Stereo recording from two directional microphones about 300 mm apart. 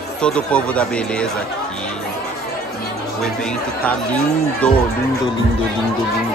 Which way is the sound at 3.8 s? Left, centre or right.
Centre.